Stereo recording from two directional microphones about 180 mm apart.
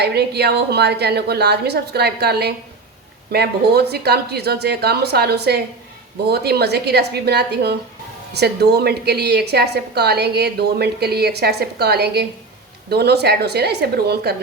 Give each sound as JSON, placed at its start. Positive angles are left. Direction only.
{"t": 0.0, "sound": "a woman's voice", "side_deg": -65}